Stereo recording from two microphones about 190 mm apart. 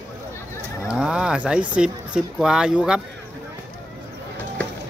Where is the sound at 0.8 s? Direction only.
5° right (ahead or behind).